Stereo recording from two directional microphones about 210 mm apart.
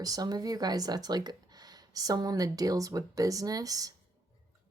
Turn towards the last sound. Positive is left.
turn(degrees=-15)  # may be behind; listen again after turning